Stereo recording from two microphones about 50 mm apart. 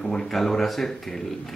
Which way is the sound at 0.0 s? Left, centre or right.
Centre.